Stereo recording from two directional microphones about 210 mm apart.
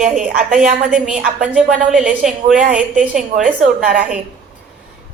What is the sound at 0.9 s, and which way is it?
A woman's voice, 5° right (ahead or behind).